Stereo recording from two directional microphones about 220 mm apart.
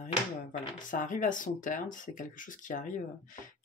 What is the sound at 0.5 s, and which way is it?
Speech, 35° left (ahead or behind).